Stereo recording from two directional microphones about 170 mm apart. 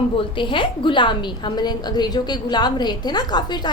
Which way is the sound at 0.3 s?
30° left (ahead or behind).